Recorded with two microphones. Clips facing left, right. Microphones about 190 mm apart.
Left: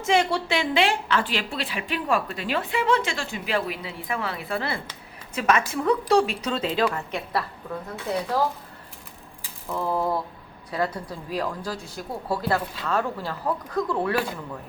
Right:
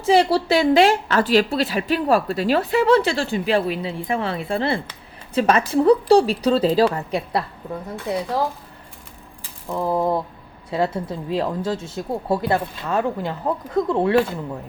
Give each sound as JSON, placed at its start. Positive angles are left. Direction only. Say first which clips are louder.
{"t": 0.0, "sound": "a woman's voice", "louder": "right 6 dB", "side_deg": -35}
{"t": 9.6, "sound": "speech", "louder": "right 4 dB", "side_deg": -15}